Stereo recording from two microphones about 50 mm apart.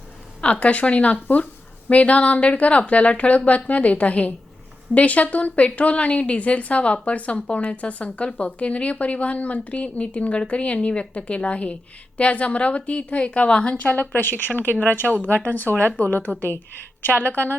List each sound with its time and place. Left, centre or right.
0.4 s speech: left
13.8 s speech: left